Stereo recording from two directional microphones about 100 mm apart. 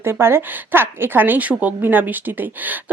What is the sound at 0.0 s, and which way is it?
A woman's voice, 25° right (ahead or behind).